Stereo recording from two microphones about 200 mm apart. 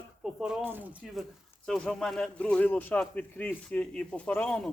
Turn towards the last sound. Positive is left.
turn(degrees=5)  # may be behind; listen again after turning